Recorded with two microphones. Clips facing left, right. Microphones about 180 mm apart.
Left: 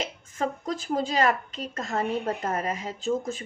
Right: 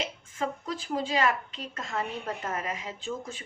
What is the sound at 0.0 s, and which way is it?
Speech, 40° left (ahead or behind).